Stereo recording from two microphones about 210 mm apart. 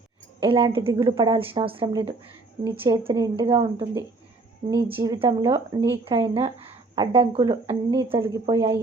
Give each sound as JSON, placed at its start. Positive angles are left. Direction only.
{"t": 0.3, "sound": "a woman's voice", "side_deg": -25}